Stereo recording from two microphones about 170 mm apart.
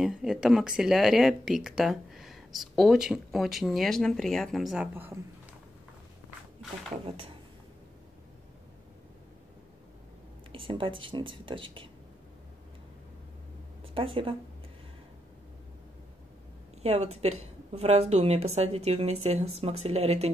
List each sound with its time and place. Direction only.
0.0 s speech: centre (ahead or behind)
4.9 s speech: 10° right (ahead or behind)
7.1 s a woman's voice: 30° right (ahead or behind)
10.5 s a woman's voice: 30° right (ahead or behind)
13.9 s a woman's voice: 30° right (ahead or behind)
16.8 s a woman's voice: 40° right (ahead or behind)